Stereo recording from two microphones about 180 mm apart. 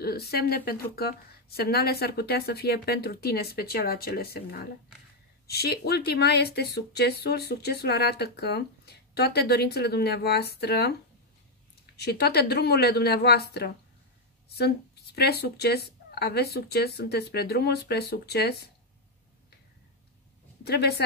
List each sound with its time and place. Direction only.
0.0 s speech: 60° left (ahead or behind)
15.1 s speech: 65° left (ahead or behind)
20.6 s speech: 65° left (ahead or behind)